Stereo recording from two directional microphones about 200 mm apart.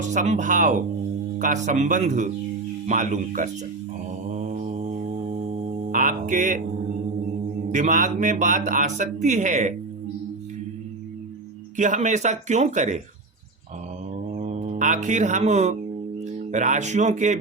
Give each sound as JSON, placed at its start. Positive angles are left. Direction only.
{"t": 0.0, "sound": "speech", "side_deg": -35}
{"t": 4.4, "sound": "mantra", "side_deg": -35}
{"t": 5.9, "sound": "a sound", "side_deg": -40}
{"t": 7.7, "sound": "speech", "side_deg": -40}
{"t": 11.8, "sound": "speech", "side_deg": -35}
{"t": 14.3, "sound": "speech", "side_deg": -40}